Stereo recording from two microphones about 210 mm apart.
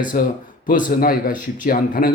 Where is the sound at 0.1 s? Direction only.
40° left (ahead or behind).